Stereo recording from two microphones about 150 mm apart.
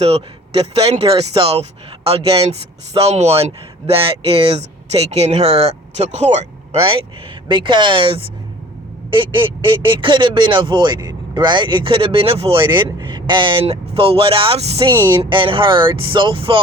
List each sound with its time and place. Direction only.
0.0 s a man's voice: 45° right (ahead or behind)